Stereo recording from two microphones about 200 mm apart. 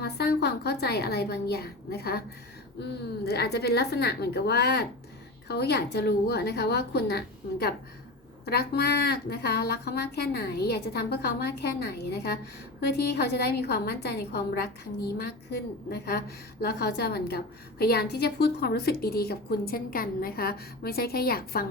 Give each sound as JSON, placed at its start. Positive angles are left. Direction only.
{"t": 0.0, "sound": "a woman's voice", "side_deg": 55}
{"t": 3.2, "sound": "a woman's voice", "side_deg": 55}